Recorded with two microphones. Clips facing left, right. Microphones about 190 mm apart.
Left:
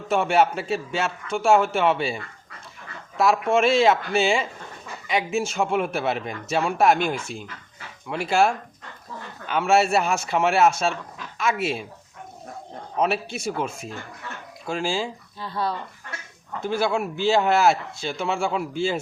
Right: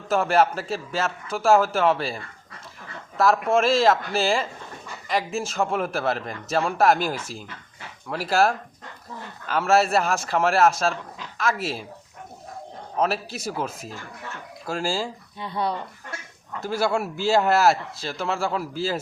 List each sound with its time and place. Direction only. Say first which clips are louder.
0.1 s a man's voice: even; centre (ahead or behind)
13.0 s a man's voice: left 1 dB; centre (ahead or behind)
15.4 s speech: right 1 dB; 20° right (ahead or behind)
16.6 s a man's voice: even; 5° right (ahead or behind)